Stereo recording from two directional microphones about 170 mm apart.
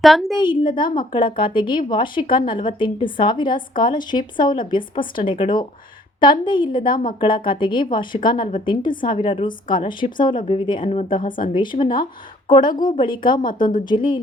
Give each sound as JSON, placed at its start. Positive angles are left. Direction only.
{"t": 0.0, "sound": "a woman's voice", "side_deg": 0}
{"t": 0.3, "sound": "a woman's voice", "side_deg": 30}